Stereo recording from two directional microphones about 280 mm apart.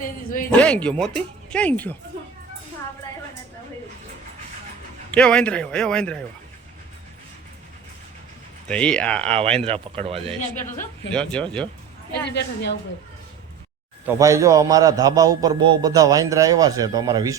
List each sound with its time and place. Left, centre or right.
0.0 s a man's voice: left
0.5 s speech: centre
5.1 s speech: centre
8.6 s speech: centre
9.6 s speech: right
10.5 s speech: centre
12.2 s a woman's voice: left
14.2 s a man's voice: centre